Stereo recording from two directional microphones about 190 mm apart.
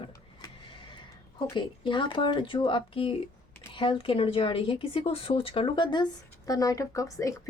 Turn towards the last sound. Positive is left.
turn(degrees=15)  # may be behind; listen again after turning